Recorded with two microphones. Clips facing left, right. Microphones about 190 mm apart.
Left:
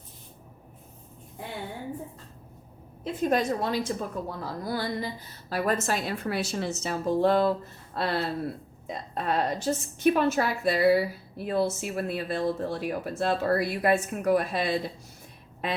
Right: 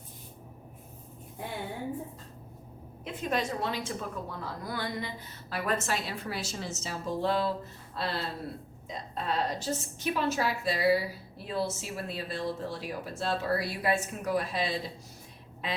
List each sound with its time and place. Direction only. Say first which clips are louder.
3.0 s a woman's voice: left 6 dB; 45° left (ahead or behind)